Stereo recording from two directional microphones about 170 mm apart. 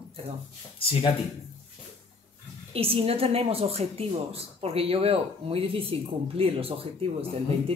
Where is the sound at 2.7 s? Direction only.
35° right (ahead or behind).